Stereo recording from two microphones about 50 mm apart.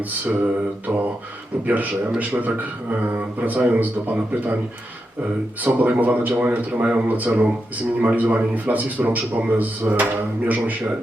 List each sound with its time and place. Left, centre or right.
0.3 s a man's voice: right
5.6 s a man's voice: right